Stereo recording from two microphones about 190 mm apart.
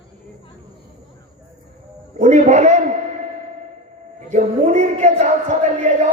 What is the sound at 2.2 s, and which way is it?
Speech, 40° right (ahead or behind).